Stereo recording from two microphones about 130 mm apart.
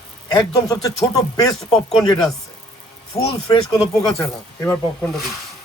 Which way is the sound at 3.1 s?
25° left (ahead or behind).